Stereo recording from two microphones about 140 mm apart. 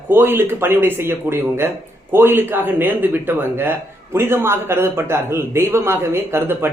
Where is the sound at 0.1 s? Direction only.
15° right (ahead or behind).